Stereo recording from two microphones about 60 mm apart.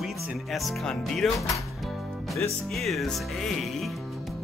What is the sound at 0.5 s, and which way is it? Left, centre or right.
Music, centre.